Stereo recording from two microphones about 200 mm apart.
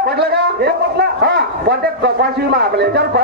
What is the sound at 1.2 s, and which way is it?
A man's voice, 55° right (ahead or behind).